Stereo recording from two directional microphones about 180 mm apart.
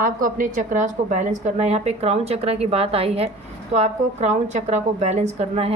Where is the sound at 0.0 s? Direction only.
50° right (ahead or behind).